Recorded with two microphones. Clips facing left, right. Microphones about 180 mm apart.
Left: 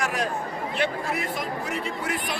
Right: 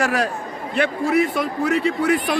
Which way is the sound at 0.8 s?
70° right (ahead or behind).